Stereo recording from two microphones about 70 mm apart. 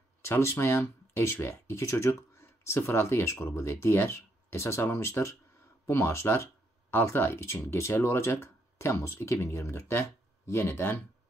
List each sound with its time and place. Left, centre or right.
0.2 s speech: left